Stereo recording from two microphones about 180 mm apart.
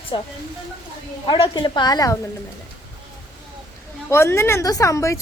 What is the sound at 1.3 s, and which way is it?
Speech, 25° left (ahead or behind).